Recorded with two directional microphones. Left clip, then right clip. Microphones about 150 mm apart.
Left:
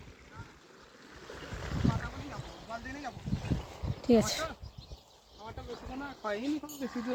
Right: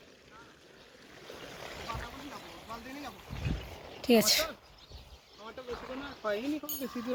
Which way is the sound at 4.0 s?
10° left (ahead or behind).